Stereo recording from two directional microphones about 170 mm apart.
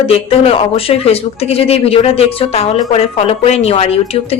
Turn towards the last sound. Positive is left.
turn(degrees=35)  # may be behind; listen again after turning